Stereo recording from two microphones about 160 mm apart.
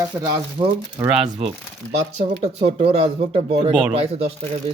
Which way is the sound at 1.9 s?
40° right (ahead or behind).